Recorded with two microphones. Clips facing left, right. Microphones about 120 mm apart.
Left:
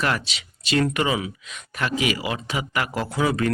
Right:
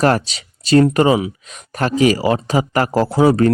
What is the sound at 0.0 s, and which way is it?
Speech, 40° right (ahead or behind).